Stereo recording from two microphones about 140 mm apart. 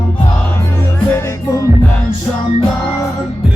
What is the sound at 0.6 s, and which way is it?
Music, 20° left (ahead or behind).